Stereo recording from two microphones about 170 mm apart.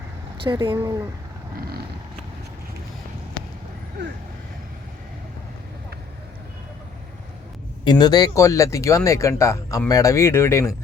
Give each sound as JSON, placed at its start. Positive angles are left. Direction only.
{"t": 0.4, "sound": "speech", "side_deg": -30}
{"t": 4.0, "sound": "speech", "side_deg": -90}
{"t": 7.9, "sound": "speech", "side_deg": 25}